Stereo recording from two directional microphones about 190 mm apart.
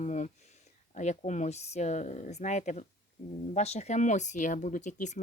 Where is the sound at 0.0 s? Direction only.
40° left (ahead or behind).